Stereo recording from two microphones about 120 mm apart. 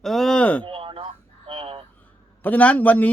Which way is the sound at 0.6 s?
45° right (ahead or behind).